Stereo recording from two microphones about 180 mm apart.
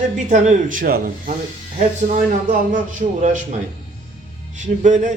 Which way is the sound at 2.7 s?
45° right (ahead or behind).